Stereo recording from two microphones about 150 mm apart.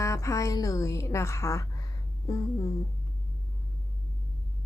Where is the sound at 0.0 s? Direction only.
20° left (ahead or behind).